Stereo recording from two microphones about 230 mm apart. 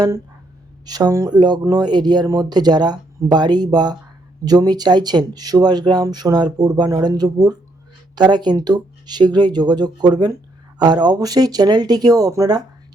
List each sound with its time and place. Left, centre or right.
0.9 s speech: centre